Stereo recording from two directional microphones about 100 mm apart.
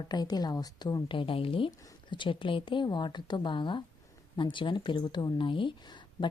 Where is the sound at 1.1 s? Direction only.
60° left (ahead or behind).